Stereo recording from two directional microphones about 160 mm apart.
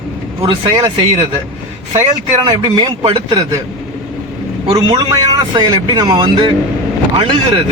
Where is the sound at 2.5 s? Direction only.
25° right (ahead or behind).